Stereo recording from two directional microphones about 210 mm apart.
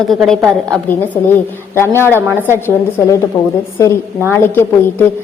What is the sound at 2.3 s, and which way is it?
Speech, 10° right (ahead or behind).